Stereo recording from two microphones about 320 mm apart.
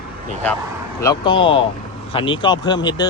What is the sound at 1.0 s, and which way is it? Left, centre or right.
Speech, centre.